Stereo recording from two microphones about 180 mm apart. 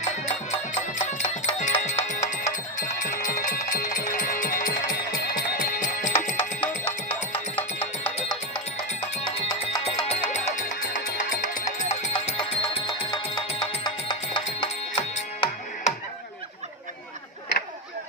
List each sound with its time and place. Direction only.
0.3 s music: 35° left (ahead or behind)
9.8 s music: 35° left (ahead or behind)
12.1 s music: 25° left (ahead or behind)